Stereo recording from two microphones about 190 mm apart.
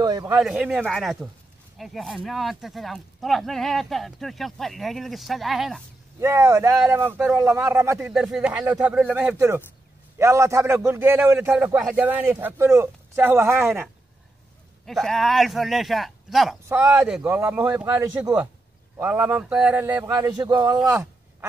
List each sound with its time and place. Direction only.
0.0 s speech: 20° right (ahead or behind)
0.4 s speech: 5° right (ahead or behind)
6.1 s a man's voice: 15° right (ahead or behind)
8.1 s speech: 5° right (ahead or behind)
8.4 s a man's voice: 15° right (ahead or behind)
14.9 s a man's voice: centre (ahead or behind); by 21.5 s 15° right (ahead or behind)